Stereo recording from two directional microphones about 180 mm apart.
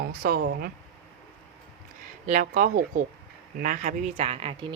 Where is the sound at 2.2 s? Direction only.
45° right (ahead or behind).